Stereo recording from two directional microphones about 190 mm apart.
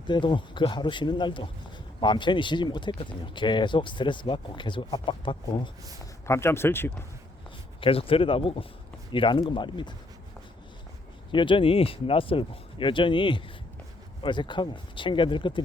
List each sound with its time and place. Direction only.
0.1 s speech: 25° left (ahead or behind)
6.2 s speech: 15° left (ahead or behind)
7.8 s speech: 30° left (ahead or behind)
11.3 s speech: 25° left (ahead or behind)